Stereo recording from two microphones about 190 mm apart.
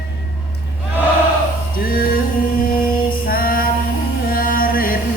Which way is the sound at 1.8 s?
50° left (ahead or behind).